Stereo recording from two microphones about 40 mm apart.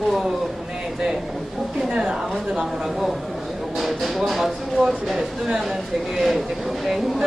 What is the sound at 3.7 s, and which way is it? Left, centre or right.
Speech, centre.